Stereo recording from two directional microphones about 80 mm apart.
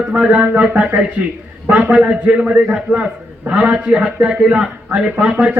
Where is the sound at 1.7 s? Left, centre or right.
Centre.